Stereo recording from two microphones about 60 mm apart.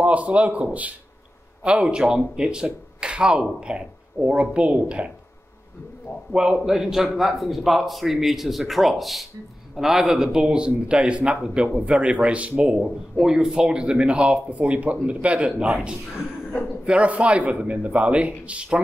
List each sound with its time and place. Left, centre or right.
0.0 s a man's voice: right
6.3 s a man's voice: centre